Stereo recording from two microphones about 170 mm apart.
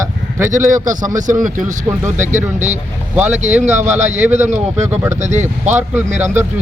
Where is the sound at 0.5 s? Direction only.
50° right (ahead or behind).